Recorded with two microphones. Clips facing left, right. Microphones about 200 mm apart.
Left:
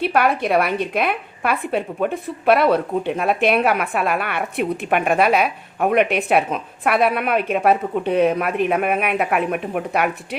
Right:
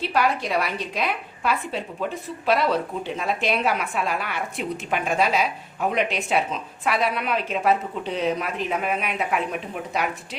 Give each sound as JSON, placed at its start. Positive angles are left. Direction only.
{"t": 0.0, "sound": "a woman's voice", "side_deg": 60}